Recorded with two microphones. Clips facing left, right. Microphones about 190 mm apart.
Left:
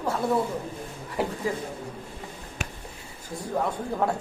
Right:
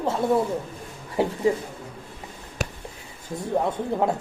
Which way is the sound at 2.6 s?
40° right (ahead or behind).